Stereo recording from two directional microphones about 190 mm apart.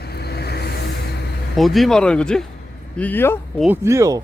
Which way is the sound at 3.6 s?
10° right (ahead or behind).